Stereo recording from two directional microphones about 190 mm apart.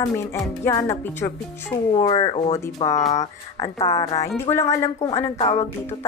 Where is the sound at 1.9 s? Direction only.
30° left (ahead or behind).